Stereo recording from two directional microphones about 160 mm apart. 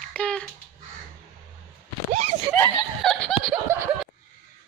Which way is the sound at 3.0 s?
5° left (ahead or behind).